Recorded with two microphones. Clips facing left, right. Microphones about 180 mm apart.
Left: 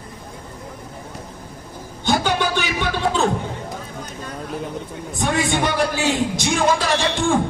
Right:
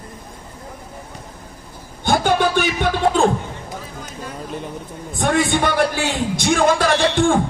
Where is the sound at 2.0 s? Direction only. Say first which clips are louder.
Right 3 dB; 50° right (ahead or behind).